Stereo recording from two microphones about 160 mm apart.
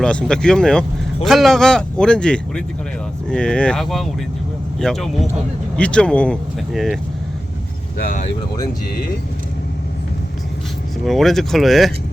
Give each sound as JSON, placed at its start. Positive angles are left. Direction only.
{"t": 0.0, "sound": "speech", "side_deg": 5}
{"t": 7.9, "sound": "speech", "side_deg": 60}
{"t": 11.0, "sound": "speech", "side_deg": 0}